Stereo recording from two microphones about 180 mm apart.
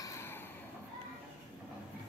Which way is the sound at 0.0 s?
15° left (ahead or behind).